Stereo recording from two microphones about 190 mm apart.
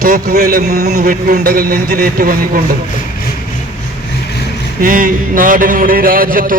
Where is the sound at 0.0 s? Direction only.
50° right (ahead or behind).